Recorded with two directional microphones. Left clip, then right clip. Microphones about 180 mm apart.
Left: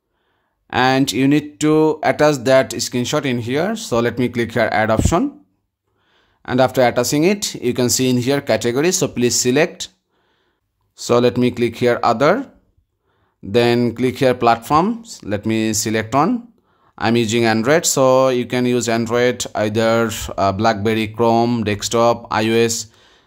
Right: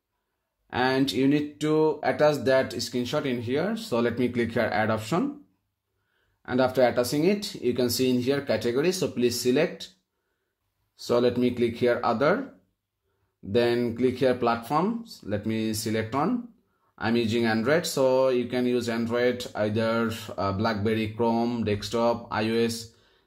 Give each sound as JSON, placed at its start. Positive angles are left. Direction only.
{"t": 0.7, "sound": "speech", "side_deg": 35}
{"t": 6.4, "sound": "speech", "side_deg": 30}
{"t": 11.0, "sound": "speech", "side_deg": 35}
{"t": 13.5, "sound": "speech", "side_deg": 35}